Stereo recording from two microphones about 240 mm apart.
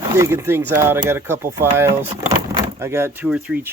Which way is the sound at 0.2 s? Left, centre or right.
Centre.